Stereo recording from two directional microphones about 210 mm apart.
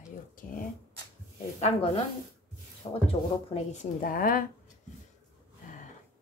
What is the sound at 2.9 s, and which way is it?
Speech, 25° left (ahead or behind).